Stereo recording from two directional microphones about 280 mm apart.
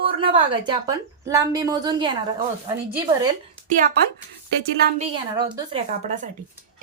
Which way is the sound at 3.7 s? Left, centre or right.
Right.